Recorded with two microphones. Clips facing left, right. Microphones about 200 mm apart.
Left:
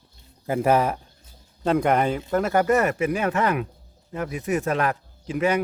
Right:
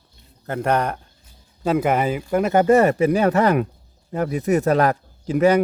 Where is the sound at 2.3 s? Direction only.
15° right (ahead or behind).